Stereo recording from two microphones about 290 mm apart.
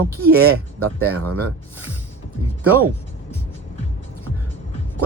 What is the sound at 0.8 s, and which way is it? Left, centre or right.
Speech, right.